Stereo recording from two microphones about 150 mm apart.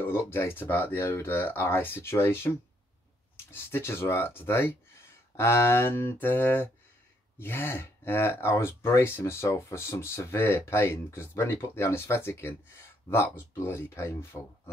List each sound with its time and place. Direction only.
0.0 s speech: 15° left (ahead or behind)
3.5 s speech: 15° left (ahead or behind)